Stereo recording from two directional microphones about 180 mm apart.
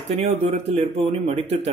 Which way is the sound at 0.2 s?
35° right (ahead or behind).